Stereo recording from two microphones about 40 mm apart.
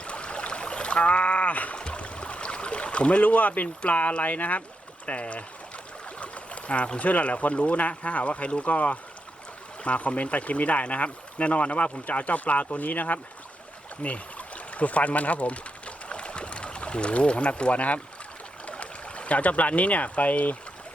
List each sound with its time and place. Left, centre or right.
0.0 s a sound: left
1.7 s boat: left
4.2 s speech: left
16.0 s pour: left
18.6 s speech: left